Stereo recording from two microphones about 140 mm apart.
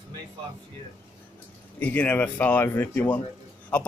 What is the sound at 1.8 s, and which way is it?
Speech, 10° left (ahead or behind).